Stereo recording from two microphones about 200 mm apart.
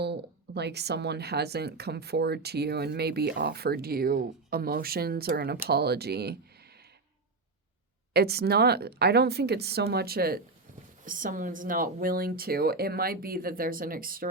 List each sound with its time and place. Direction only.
0.0 s speech: 55° right (ahead or behind)
8.1 s speech: 55° right (ahead or behind)